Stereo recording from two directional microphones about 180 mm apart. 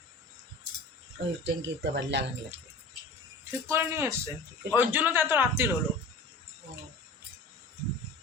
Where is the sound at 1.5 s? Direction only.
80° right.